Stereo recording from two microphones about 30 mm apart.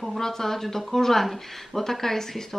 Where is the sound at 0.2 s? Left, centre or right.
Centre.